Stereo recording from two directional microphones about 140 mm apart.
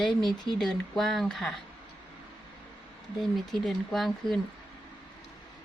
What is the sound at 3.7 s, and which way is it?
Speech, centre (ahead or behind).